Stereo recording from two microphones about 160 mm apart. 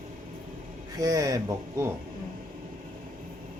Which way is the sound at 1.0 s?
20° right (ahead or behind).